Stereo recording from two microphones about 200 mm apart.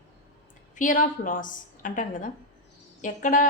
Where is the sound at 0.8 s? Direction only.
40° left (ahead or behind).